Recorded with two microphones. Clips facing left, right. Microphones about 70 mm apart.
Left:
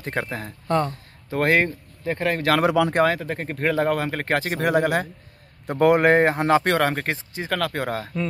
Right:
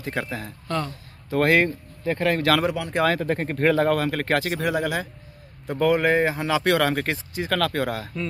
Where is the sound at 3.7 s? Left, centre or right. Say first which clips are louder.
Right 1 dB; centre.